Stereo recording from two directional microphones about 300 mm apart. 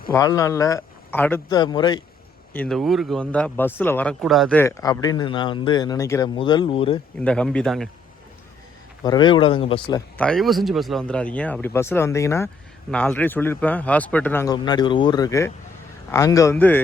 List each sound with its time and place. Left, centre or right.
0.1 s speech: centre
2.5 s speech: centre
7.2 s speech: centre
9.0 s speech: centre
10.2 s speech: centre